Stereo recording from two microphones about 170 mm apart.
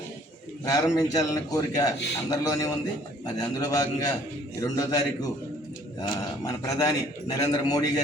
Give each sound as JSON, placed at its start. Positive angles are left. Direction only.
{"t": 0.6, "sound": "a man's voice", "side_deg": 20}